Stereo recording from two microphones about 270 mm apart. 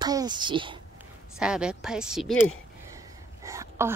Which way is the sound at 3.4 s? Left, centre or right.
Centre.